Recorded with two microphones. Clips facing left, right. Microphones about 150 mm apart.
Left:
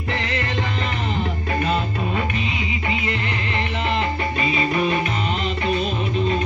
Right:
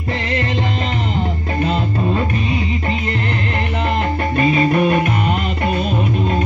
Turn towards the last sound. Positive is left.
turn(degrees=-55)  # may be behind; listen again after turning